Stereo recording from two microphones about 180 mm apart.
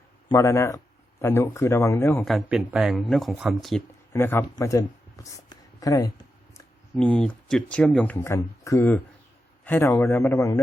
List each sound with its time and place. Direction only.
0.3 s speech: 15° left (ahead or behind)
2.2 s speech: centre (ahead or behind)
4.1 s speech: 10° left (ahead or behind)
6.9 s speech: 5° left (ahead or behind)